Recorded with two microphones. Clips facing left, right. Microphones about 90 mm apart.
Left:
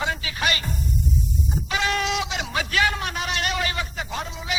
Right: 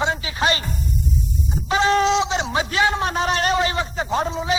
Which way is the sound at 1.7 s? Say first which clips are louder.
Right 8 dB; 30° right (ahead or behind).